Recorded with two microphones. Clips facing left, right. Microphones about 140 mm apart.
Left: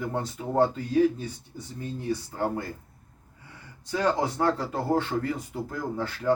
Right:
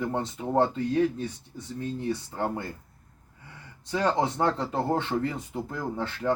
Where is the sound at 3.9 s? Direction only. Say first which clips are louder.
Even; 25° right (ahead or behind).